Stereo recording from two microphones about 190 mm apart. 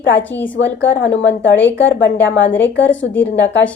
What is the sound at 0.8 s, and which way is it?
Speech, 75° left (ahead or behind).